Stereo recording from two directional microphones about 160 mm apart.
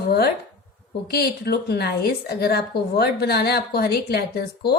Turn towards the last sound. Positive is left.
turn(degrees=80)